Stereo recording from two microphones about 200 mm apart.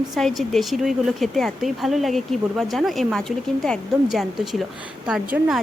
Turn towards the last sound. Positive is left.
turn(degrees=-5)  # may be behind; listen again after turning